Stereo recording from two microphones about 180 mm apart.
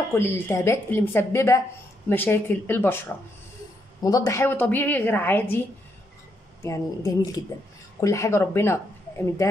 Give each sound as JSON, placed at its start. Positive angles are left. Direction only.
{"t": 0.1, "sound": "a woman's voice", "side_deg": 15}